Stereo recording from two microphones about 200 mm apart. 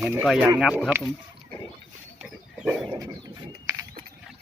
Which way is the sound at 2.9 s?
20° right (ahead or behind).